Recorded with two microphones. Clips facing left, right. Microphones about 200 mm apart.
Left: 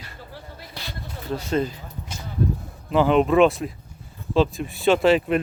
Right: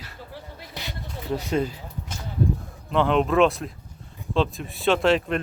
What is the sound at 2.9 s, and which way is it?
Speech, 5° left (ahead or behind).